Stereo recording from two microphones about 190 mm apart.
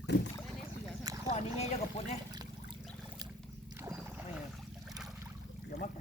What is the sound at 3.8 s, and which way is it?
Boat, 15° right (ahead or behind).